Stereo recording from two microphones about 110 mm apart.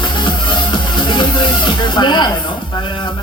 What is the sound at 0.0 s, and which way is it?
Music, 45° left (ahead or behind).